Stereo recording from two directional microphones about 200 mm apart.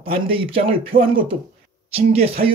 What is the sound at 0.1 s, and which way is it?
Speech, 25° right (ahead or behind).